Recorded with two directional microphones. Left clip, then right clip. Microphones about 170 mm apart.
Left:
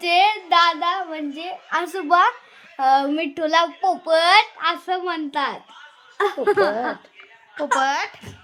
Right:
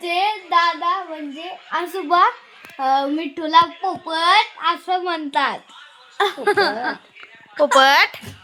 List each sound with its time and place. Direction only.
0.0 s child singing: 5° left (ahead or behind)
1.5 s a woman's voice: centre (ahead or behind)
2.7 s a woman's voice: 20° left (ahead or behind)
4.9 s a woman's voice: 30° right (ahead or behind)